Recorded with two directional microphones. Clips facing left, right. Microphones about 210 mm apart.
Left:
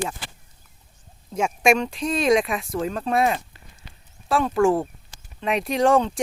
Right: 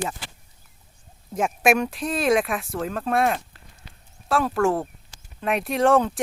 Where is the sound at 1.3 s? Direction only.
5° right (ahead or behind).